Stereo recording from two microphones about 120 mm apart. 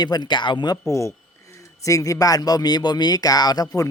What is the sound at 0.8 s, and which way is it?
Speech, 25° left (ahead or behind).